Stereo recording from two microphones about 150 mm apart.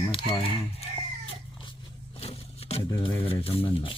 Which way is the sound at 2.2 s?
40° left (ahead or behind).